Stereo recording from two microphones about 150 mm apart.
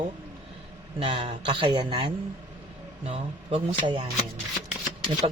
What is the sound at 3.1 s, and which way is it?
Speech, 40° right (ahead or behind).